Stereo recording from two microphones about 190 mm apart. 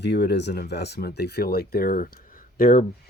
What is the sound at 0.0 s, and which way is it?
Speech, 65° left (ahead or behind).